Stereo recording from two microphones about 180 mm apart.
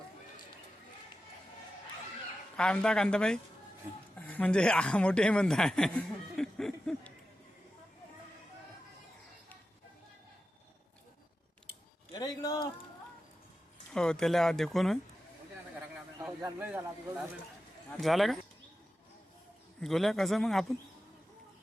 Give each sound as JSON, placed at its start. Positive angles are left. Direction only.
{"t": 2.6, "sound": "a man's voice", "side_deg": 5}
{"t": 12.1, "sound": "a sound", "side_deg": 20}
{"t": 13.9, "sound": "speech", "side_deg": 5}
{"t": 16.4, "sound": "speech", "side_deg": -10}
{"t": 19.8, "sound": "speech", "side_deg": 0}